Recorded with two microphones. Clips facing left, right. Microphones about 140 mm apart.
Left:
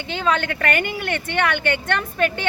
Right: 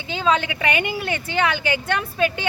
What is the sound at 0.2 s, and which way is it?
A woman's voice, 10° right (ahead or behind).